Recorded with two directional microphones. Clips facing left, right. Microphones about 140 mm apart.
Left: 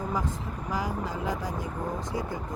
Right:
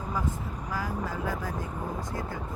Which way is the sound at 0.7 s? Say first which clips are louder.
Left 2 dB; 15° left (ahead or behind).